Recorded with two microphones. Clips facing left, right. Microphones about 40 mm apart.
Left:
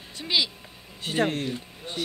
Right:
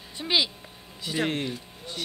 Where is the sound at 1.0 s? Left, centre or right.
Left.